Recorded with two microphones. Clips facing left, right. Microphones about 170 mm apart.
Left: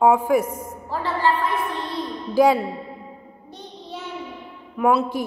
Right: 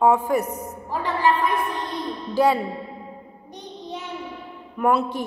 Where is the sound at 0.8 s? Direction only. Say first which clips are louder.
Even; 15° right (ahead or behind).